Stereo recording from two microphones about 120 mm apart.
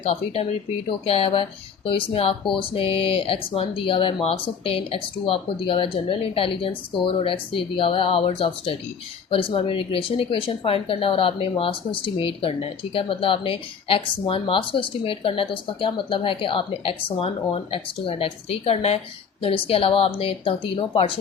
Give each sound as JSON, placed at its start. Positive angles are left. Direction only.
{"t": 0.9, "sound": "speech", "side_deg": 55}